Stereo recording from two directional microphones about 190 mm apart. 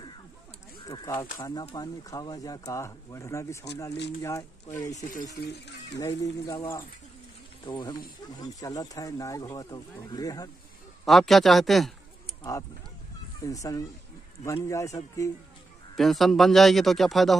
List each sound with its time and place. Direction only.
0.8 s speech: 20° left (ahead or behind)
4.9 s speech: 45° left (ahead or behind)
5.9 s speech: 15° left (ahead or behind)
7.6 s speech: 25° left (ahead or behind)
11.1 s speech: centre (ahead or behind)
13.4 s speech: 15° left (ahead or behind)
16.0 s speech: centre (ahead or behind)